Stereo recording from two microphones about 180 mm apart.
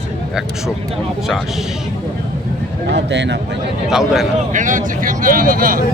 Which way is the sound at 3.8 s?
Centre (ahead or behind).